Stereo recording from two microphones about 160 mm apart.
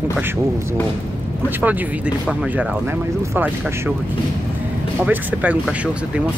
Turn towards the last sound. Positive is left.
turn(degrees=-10)  # may be behind; listen again after turning